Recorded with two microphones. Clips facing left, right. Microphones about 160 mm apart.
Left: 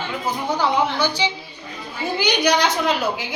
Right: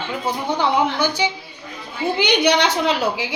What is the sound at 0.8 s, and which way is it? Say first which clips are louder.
Speech: right 1 dB; 10° right (ahead or behind).